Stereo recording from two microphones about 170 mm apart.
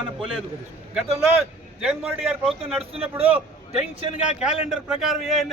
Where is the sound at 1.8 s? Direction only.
5° right (ahead or behind).